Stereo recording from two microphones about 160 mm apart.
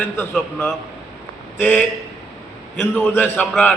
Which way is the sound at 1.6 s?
10° left (ahead or behind).